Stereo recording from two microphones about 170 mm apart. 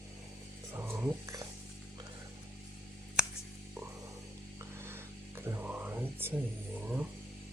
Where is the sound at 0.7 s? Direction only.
15° right (ahead or behind).